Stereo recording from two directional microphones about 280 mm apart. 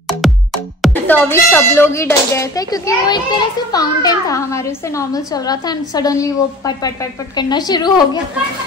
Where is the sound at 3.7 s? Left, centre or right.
Centre.